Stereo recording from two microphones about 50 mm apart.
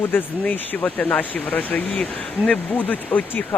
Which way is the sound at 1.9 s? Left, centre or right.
Centre.